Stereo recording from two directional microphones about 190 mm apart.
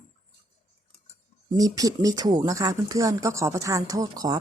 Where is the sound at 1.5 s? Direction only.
20° right (ahead or behind).